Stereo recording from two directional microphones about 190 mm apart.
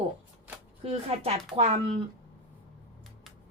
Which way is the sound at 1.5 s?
30° right (ahead or behind).